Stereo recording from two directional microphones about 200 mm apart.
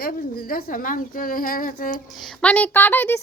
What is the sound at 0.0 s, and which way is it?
A woman's voice, 45° left (ahead or behind).